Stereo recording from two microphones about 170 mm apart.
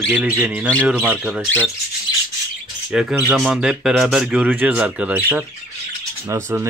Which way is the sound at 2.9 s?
5° right (ahead or behind).